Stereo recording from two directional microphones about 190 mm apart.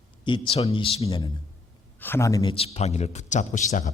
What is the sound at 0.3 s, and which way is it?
Speech, 25° left (ahead or behind).